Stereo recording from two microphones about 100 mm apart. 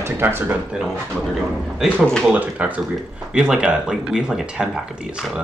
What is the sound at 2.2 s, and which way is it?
Speech, 15° right (ahead or behind).